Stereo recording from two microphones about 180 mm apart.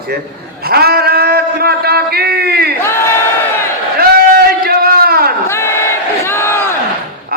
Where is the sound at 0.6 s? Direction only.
60° right (ahead or behind).